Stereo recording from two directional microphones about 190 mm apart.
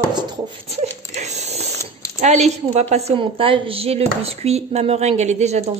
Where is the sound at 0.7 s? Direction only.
35° right (ahead or behind).